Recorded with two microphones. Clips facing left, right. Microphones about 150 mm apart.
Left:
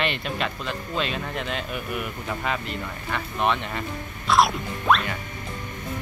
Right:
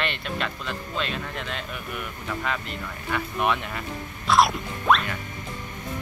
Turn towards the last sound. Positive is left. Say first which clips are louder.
# even
turn(degrees=0)  # may be behind; listen again after turning